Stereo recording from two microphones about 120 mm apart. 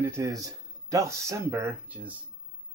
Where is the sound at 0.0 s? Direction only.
25° right (ahead or behind).